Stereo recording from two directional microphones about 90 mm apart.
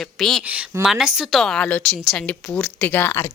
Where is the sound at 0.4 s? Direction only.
15° right (ahead or behind).